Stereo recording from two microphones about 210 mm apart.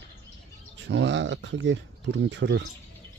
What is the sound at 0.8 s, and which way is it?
Speech, 55° right (ahead or behind).